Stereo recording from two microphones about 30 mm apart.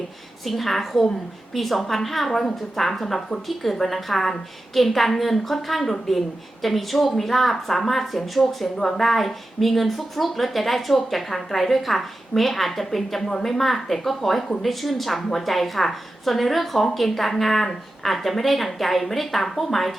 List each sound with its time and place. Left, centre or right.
0.4 s a woman's voice: centre
8.7 s a woman's voice: centre
9.0 s a woman's voice: centre